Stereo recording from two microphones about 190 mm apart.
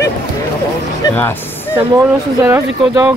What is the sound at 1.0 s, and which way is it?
Speech, 15° left (ahead or behind).